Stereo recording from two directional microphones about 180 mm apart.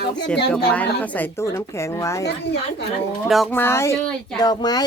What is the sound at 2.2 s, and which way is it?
Speech, 65° left (ahead or behind).